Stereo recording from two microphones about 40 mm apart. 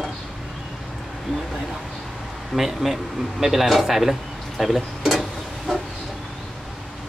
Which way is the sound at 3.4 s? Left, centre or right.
Centre.